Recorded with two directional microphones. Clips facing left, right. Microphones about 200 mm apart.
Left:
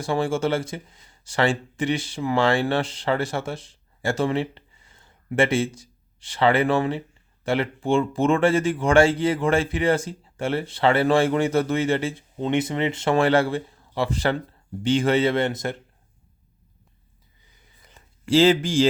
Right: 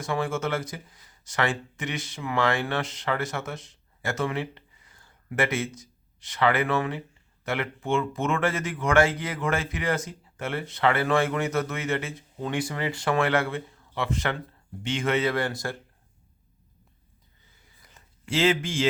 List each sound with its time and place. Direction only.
0.0 s speech: 30° left (ahead or behind)
18.3 s speech: 35° left (ahead or behind)